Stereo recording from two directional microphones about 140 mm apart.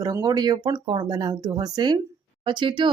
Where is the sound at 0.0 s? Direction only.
25° right (ahead or behind).